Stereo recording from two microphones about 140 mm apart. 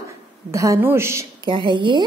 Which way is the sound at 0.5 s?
20° right (ahead or behind).